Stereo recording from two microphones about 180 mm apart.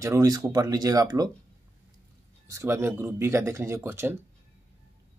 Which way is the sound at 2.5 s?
15° right (ahead or behind).